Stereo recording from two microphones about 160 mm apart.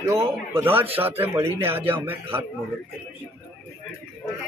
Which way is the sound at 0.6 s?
10° right (ahead or behind).